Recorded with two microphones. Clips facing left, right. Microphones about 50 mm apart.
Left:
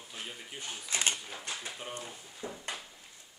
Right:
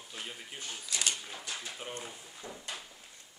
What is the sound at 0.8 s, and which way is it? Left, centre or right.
Speech, left.